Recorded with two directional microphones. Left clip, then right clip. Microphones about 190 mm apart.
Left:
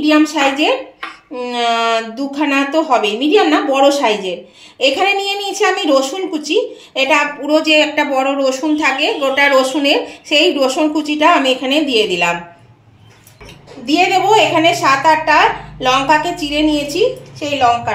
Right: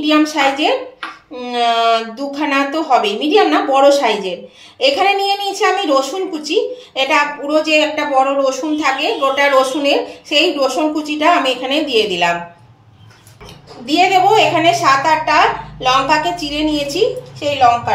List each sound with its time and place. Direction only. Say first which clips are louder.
0.0 s speech: left 1 dB; 40° left (ahead or behind)
13.8 s a woman's voice: right 1 dB; 40° left (ahead or behind)